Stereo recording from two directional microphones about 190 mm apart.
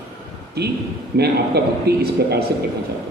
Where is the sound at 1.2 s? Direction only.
60° right (ahead or behind).